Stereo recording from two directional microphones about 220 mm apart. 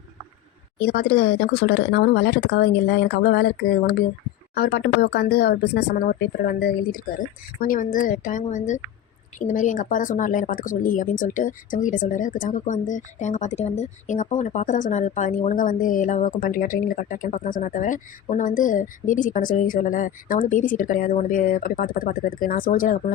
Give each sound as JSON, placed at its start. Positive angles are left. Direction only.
{"t": 0.8, "sound": "speech", "side_deg": 45}